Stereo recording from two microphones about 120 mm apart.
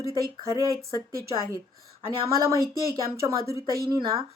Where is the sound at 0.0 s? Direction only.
25° right (ahead or behind).